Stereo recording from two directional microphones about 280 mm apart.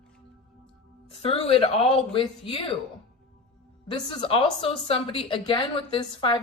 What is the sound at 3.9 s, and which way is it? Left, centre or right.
A woman's voice, centre.